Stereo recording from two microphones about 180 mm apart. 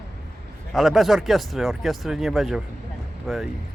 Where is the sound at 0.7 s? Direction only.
Centre (ahead or behind).